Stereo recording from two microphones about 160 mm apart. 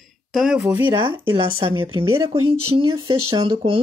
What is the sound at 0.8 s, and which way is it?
Speech, 30° right (ahead or behind).